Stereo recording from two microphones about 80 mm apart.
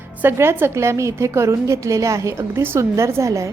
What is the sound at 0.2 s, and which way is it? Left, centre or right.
A woman's voice, right.